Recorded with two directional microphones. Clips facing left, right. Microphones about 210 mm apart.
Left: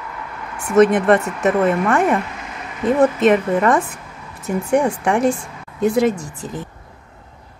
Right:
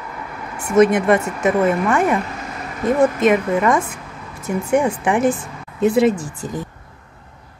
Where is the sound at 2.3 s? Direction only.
40° right (ahead or behind).